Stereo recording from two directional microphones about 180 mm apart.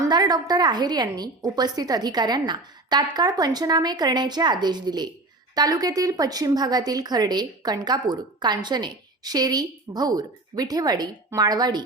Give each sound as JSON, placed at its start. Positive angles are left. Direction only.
{"t": 0.0, "sound": "speech", "side_deg": -20}